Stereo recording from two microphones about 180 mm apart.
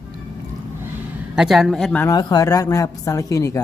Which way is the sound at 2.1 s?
20° left (ahead or behind).